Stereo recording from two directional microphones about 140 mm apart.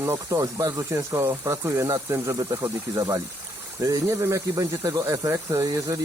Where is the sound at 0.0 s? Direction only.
20° right (ahead or behind).